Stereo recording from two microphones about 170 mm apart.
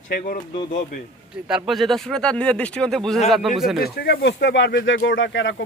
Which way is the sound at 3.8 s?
80° left.